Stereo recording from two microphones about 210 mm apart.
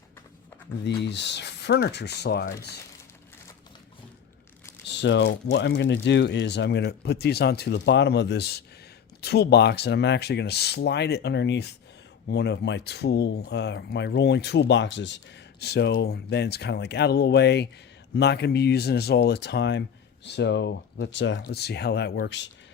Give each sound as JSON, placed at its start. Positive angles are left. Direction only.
{"t": 1.0, "sound": "speech", "side_deg": 55}
{"t": 4.9, "sound": "speech", "side_deg": 55}